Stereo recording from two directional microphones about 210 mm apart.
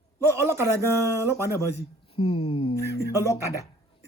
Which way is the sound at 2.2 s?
25° left (ahead or behind).